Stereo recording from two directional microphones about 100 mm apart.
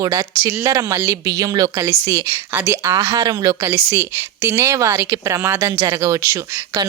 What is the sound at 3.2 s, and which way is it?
A woman's voice, 40° right (ahead or behind).